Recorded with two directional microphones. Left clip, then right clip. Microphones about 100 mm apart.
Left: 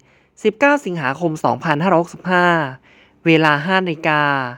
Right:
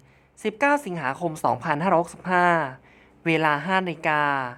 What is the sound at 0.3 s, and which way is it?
A woman's voice, 35° left (ahead or behind).